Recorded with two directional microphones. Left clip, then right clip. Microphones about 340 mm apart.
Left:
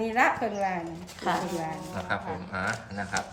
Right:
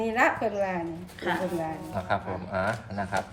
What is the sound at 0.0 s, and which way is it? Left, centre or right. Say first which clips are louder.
Speech: even; centre.